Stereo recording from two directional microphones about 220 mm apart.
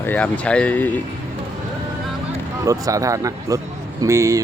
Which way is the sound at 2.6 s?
15° right (ahead or behind).